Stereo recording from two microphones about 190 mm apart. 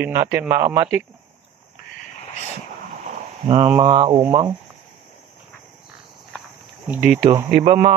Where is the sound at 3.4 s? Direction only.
35° right (ahead or behind).